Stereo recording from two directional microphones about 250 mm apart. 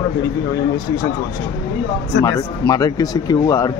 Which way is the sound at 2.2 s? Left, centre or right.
Centre.